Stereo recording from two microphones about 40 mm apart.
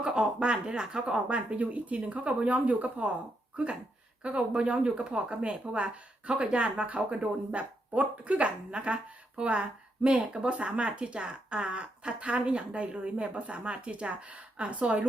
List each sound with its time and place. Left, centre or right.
0.0 s speech: right
1.5 s speech: right
4.2 s speech: right